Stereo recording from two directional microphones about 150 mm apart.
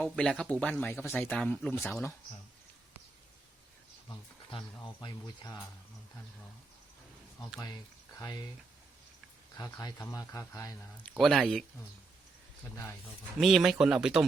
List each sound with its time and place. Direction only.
0.0 s speech: 5° left (ahead or behind)
5.0 s speech: 25° left (ahead or behind)
8.2 s speech: 25° left (ahead or behind)
9.6 s speech: 20° left (ahead or behind)
11.2 s speech: centre (ahead or behind)
13.4 s speech: centre (ahead or behind)